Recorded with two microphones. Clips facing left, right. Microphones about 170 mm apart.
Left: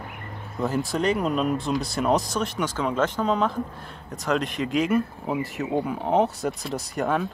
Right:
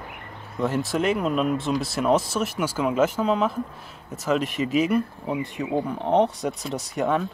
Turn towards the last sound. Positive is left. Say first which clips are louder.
# right 1 dB
turn(degrees=0)  # may be behind; listen again after turning